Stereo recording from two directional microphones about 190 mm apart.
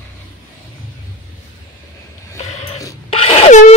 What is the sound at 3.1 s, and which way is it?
Wail, 30° left (ahead or behind).